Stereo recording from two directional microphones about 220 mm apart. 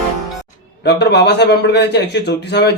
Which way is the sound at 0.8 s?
50° left (ahead or behind).